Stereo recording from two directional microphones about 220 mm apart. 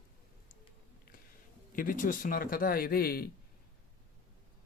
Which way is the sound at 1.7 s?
40° left (ahead or behind).